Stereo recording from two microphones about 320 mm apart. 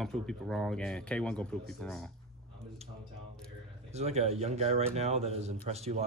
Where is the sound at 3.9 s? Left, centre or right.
Centre.